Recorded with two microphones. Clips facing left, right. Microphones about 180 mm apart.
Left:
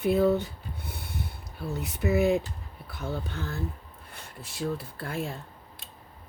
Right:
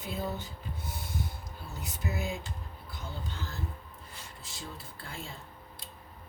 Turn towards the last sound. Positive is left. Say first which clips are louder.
# left 10 dB
turn(degrees=65)  # may be behind; listen again after turning